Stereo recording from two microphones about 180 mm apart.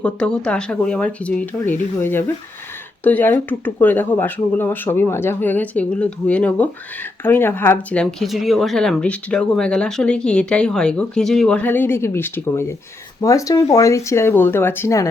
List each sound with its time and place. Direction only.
0.0 s speech: 5° left (ahead or behind)